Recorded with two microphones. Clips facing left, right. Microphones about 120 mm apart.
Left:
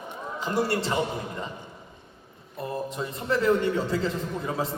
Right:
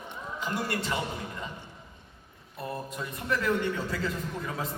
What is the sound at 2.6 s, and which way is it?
A man's voice, 30° left (ahead or behind).